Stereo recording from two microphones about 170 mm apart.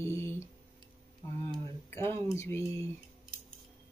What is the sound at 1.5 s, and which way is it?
Speech, 15° left (ahead or behind).